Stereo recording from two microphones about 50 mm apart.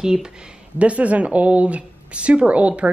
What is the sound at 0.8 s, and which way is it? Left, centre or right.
Speech, right.